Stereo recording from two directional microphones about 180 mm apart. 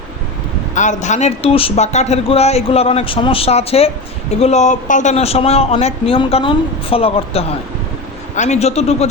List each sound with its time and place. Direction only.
0.7 s speech: 40° left (ahead or behind)